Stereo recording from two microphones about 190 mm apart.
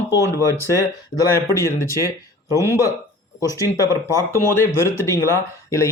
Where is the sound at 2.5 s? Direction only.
15° right (ahead or behind).